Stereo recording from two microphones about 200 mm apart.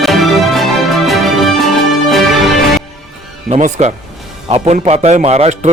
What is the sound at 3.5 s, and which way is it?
A man's voice, 35° right (ahead or behind).